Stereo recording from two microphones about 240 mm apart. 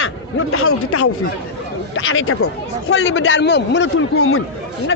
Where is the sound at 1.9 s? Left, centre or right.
Left.